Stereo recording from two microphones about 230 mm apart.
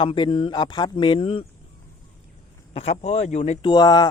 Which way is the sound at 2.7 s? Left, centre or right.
Left.